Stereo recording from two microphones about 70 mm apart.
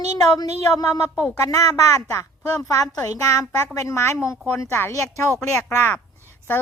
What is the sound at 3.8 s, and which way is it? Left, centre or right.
A woman's voice, left.